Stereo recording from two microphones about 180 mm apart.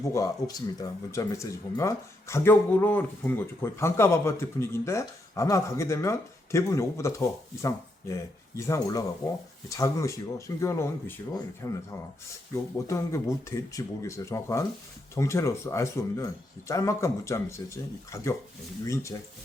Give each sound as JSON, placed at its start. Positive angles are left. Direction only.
{"t": 0.0, "sound": "speech", "side_deg": 15}